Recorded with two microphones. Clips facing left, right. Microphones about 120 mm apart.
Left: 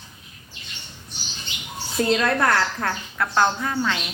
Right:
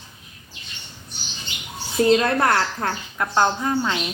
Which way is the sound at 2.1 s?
30° right (ahead or behind).